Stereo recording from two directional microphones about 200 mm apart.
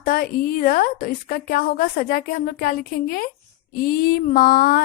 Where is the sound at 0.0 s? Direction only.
45° left (ahead or behind).